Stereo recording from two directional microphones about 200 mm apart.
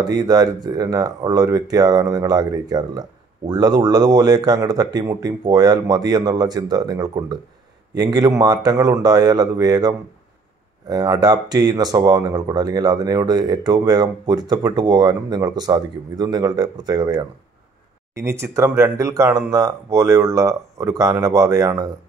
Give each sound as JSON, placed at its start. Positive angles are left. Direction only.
{"t": 0.0, "sound": "speech", "side_deg": -20}
{"t": 18.1, "sound": "speech", "side_deg": -15}